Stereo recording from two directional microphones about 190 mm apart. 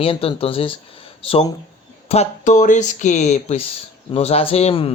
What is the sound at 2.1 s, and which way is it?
Speech, 35° left (ahead or behind).